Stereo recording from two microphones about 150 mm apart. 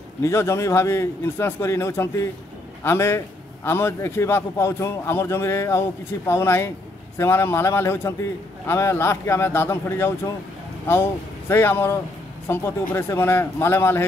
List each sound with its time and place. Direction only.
0.2 s a man's voice: 15° left (ahead or behind)